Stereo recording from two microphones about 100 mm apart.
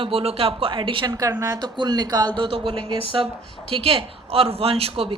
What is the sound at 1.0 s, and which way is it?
A woman's voice, 40° right (ahead or behind).